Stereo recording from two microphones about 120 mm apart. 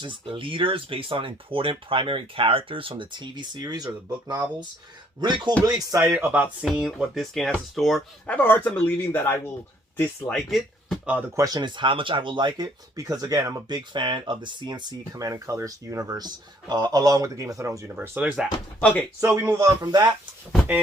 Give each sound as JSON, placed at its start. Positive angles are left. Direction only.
{"t": 0.0, "sound": "speech", "side_deg": -45}
{"t": 5.2, "sound": "speech", "side_deg": -35}
{"t": 6.0, "sound": "speech", "side_deg": -5}
{"t": 8.3, "sound": "speech", "side_deg": 15}
{"t": 10.0, "sound": "speech", "side_deg": 5}
{"t": 11.0, "sound": "speech", "side_deg": -10}
{"t": 11.3, "sound": "speech", "side_deg": -30}
{"t": 18.8, "sound": "speech", "side_deg": 10}
{"t": 19.2, "sound": "speech", "side_deg": -20}